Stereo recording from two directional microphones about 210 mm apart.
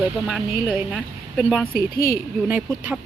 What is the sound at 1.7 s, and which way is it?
Speech, 45° left (ahead or behind).